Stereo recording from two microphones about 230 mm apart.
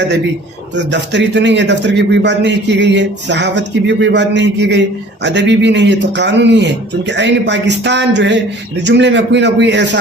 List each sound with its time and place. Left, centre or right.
0.8 s a man's voice: right